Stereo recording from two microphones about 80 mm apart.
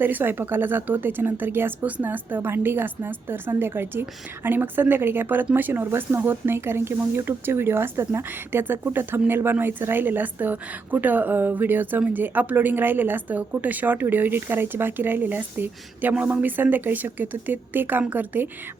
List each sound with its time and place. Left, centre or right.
0.0 s a woman's voice: right